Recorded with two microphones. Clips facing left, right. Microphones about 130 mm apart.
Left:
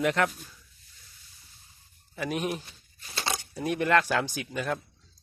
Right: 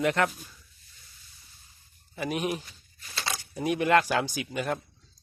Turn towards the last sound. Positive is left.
turn(degrees=-5)  # may be behind; listen again after turning